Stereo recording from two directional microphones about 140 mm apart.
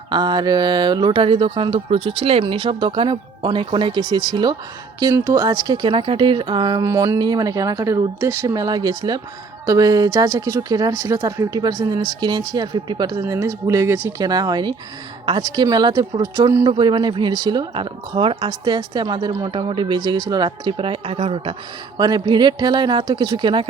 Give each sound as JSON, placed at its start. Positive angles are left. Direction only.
{"t": 0.1, "sound": "speech", "side_deg": -30}
{"t": 21.9, "sound": "speech", "side_deg": -30}